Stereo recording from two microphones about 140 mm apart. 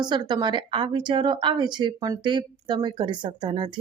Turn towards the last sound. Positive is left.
turn(degrees=-35)  # may be behind; listen again after turning